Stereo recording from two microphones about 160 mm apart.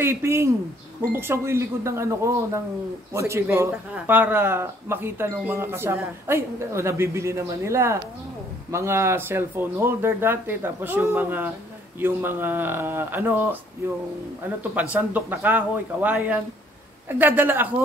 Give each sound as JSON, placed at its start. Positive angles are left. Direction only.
{"t": 0.0, "sound": "speech", "side_deg": -15}
{"t": 14.6, "sound": "speech", "side_deg": -10}